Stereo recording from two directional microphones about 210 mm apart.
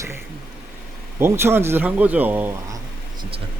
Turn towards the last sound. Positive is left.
turn(degrees=-25)  # may be behind; listen again after turning